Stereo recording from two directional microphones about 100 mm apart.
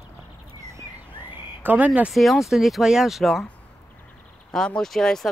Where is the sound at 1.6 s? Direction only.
15° right (ahead or behind).